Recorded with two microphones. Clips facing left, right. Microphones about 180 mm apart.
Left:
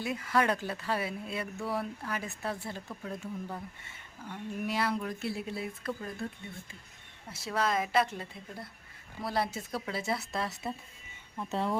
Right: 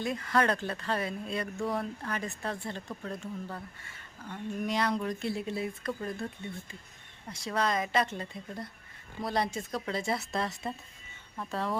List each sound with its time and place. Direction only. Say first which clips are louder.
0.0 s speech: right 1 dB; 10° left (ahead or behind)
7.3 s speech: right 1 dB; 5° left (ahead or behind)
11.3 s speech: left 1 dB; 20° left (ahead or behind)